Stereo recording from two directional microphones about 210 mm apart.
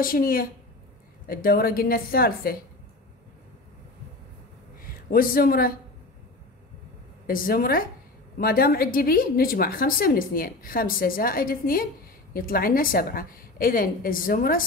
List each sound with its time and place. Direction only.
0.0 s a woman's voice: 45° left (ahead or behind)
4.8 s a man's voice: 45° left (ahead or behind)
7.2 s a woman's voice: 45° left (ahead or behind)